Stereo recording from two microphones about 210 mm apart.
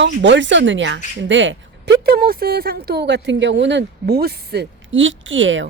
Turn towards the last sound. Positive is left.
turn(degrees=-65)  # may be behind; listen again after turning